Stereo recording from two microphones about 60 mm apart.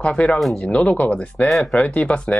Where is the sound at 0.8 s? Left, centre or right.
Left.